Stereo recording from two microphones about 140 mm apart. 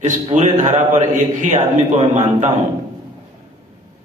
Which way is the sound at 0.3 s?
60° right (ahead or behind).